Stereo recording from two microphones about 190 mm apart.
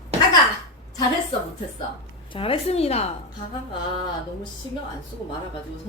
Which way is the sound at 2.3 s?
30° left (ahead or behind).